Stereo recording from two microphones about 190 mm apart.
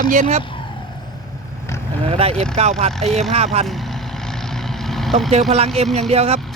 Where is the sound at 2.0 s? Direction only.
35° right (ahead or behind).